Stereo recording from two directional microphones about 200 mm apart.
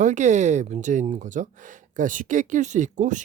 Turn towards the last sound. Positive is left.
turn(degrees=-40)  # may be behind; listen again after turning